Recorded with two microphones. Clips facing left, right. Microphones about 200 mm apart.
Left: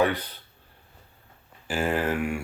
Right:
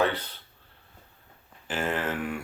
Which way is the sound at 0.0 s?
10° left (ahead or behind).